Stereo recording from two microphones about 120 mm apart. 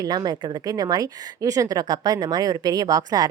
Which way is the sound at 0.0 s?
35° right (ahead or behind).